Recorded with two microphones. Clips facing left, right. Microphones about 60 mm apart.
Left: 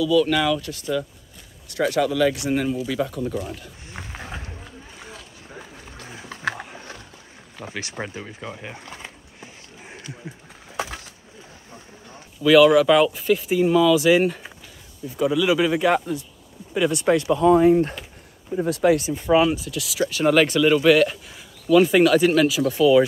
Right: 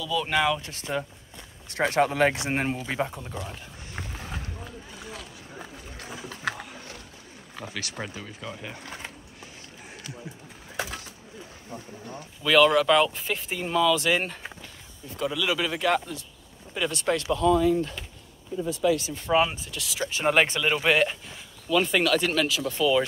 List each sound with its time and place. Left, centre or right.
0.1 s speech: right
3.1 s speech: centre
4.0 s speech: centre
6.5 s roaring cats: left
7.7 s speech: left
12.4 s speech: centre
17.5 s speech: left
18.6 s speech: left
18.9 s speech: left
19.7 s speech: centre
20.2 s speech: centre
21.3 s speech: centre